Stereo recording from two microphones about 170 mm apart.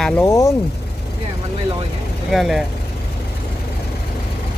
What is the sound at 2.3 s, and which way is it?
Speech, centre (ahead or behind).